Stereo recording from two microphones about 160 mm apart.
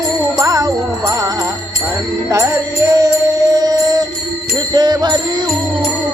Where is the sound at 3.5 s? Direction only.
25° right (ahead or behind).